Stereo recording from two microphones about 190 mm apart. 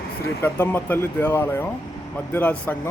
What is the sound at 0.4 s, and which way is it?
Speech, 10° left (ahead or behind).